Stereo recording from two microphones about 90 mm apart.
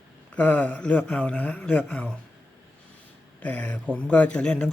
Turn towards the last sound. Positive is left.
turn(degrees=10)  # may be behind; listen again after turning